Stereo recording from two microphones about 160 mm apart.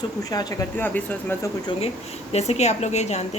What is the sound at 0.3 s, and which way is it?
Speech, 20° left (ahead or behind).